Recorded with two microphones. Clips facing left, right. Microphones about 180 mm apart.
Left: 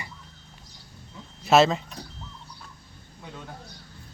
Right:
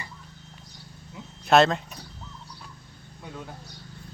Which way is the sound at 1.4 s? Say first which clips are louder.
Even; centre (ahead or behind).